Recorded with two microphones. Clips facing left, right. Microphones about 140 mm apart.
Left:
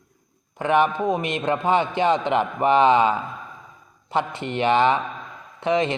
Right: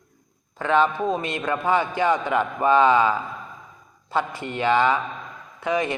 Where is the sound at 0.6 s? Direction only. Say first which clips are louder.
Left 1 dB; 20° left (ahead or behind).